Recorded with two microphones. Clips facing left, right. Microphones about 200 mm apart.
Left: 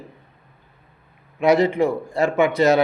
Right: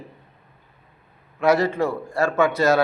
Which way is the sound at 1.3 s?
15° left (ahead or behind).